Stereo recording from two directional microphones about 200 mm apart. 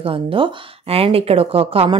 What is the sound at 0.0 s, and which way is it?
A woman's voice, 25° right (ahead or behind).